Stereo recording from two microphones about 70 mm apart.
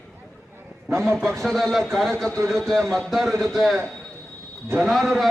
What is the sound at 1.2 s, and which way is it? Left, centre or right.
A man's voice, centre.